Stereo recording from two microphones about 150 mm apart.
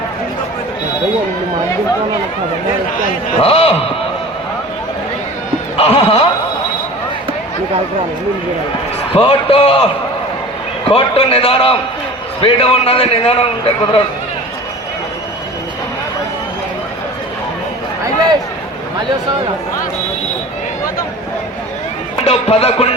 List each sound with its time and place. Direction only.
3.4 s a man's voice: 40° left (ahead or behind)
5.7 s speech: 40° left (ahead or behind)
9.1 s a man's voice: 40° left (ahead or behind)
10.8 s a man's voice: 40° left (ahead or behind)
22.3 s speech: 40° left (ahead or behind)